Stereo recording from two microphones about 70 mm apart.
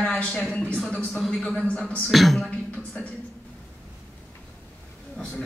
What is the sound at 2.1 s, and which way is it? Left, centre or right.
Speech, centre.